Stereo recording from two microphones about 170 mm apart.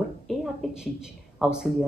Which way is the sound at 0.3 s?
Centre (ahead or behind).